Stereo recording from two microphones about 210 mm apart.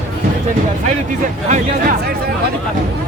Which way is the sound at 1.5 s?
35° right (ahead or behind).